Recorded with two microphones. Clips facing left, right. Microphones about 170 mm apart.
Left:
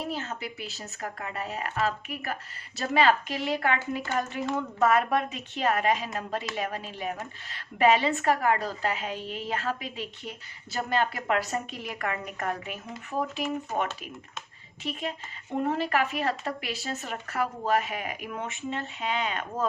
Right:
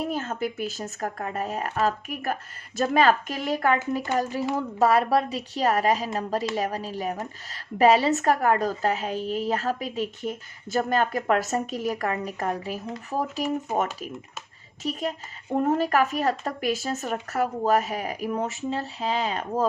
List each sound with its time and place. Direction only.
0.1 s a woman's voice: 50° right (ahead or behind)
14.8 s a woman's voice: 40° right (ahead or behind)